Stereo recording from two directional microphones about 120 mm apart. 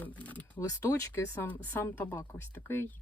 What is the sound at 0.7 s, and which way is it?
Speech, 25° left (ahead or behind).